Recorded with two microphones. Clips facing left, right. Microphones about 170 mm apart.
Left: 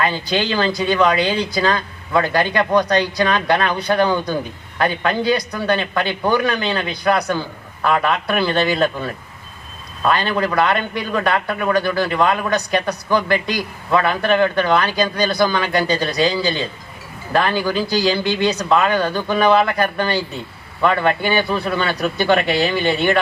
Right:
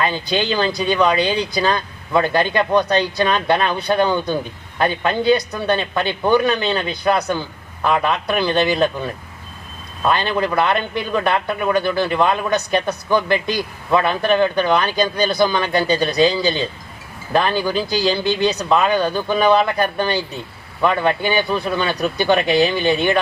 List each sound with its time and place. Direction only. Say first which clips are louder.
0.0 s speech: even; 20° right (ahead or behind)